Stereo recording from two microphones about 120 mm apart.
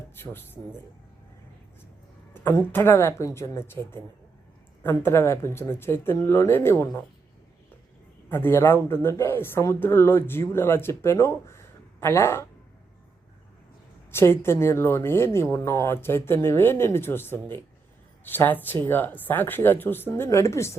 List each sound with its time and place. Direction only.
0.2 s a woman's voice: 20° left (ahead or behind)
2.3 s a woman's voice: 20° left (ahead or behind)
8.3 s a woman's voice: 20° left (ahead or behind)
14.1 s a woman's voice: 20° left (ahead or behind)